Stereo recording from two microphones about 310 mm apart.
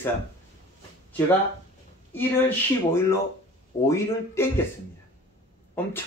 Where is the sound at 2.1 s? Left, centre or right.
Centre.